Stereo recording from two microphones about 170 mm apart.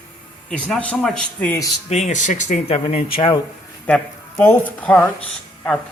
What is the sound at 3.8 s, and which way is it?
A woman's voice, 10° left (ahead or behind).